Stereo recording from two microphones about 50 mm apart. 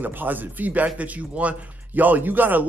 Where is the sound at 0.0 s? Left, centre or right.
Right.